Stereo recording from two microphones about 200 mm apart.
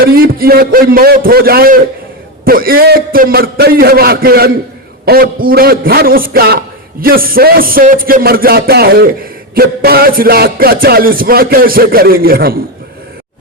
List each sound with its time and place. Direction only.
0.0 s music: 50° right (ahead or behind)